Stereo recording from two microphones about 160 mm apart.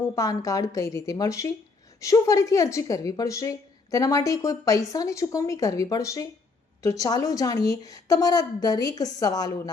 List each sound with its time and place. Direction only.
0.2 s a woman's voice: 20° left (ahead or behind)